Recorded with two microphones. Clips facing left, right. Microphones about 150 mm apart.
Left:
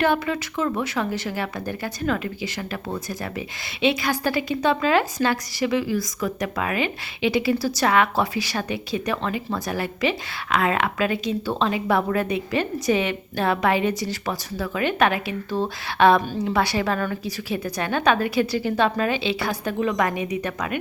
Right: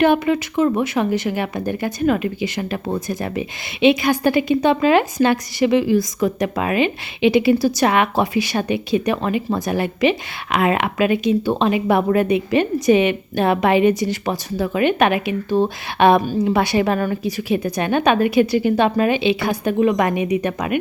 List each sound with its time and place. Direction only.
0.0 s a woman's voice: 20° right (ahead or behind)